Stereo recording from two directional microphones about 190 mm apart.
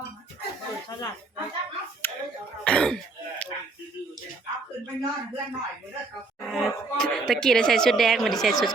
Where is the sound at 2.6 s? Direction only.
5° left (ahead or behind).